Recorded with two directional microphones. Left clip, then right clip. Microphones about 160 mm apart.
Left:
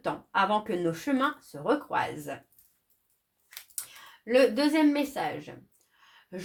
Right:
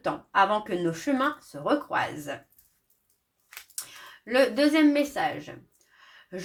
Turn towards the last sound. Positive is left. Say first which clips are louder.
# right 4 dB
turn(degrees=35)  # may be behind; listen again after turning